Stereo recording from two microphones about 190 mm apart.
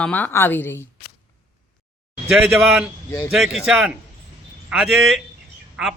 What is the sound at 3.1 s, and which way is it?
Speech, 20° left (ahead or behind).